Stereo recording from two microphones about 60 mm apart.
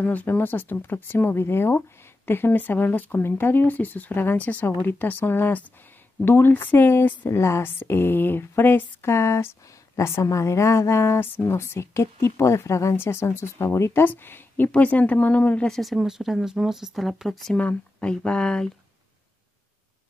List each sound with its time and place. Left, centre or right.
0.0 s speech: left
9.1 s a woman's voice: left
12.9 s a woman's voice: left
14.0 s speech: left
15.6 s speech: centre
17.6 s speech: left